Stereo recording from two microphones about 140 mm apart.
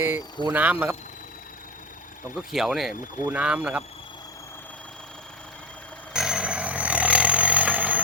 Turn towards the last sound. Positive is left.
turn(degrees=-10)  # may be behind; listen again after turning